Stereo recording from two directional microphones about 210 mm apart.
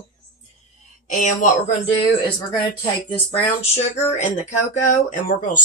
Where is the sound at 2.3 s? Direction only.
25° left (ahead or behind).